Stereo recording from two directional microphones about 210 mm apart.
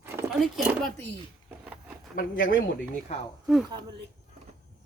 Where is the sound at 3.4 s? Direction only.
Centre (ahead or behind).